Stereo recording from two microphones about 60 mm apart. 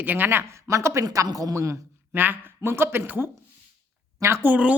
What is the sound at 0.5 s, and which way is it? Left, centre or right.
A woman's voice, right.